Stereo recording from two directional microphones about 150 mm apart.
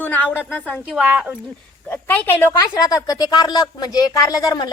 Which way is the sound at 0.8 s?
5° right (ahead or behind).